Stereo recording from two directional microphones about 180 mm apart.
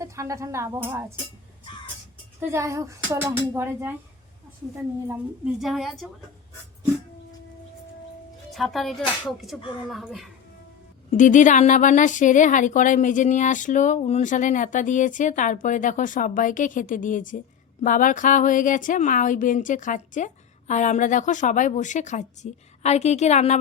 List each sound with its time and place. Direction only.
0.0 s speech: 15° right (ahead or behind)
2.4 s speech: 15° right (ahead or behind)
5.0 s a woman's voice: 5° right (ahead or behind)
8.5 s a woman's voice: centre (ahead or behind)
11.1 s speech: 45° left (ahead or behind)